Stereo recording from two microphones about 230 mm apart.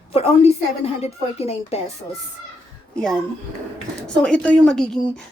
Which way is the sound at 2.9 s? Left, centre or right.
Centre.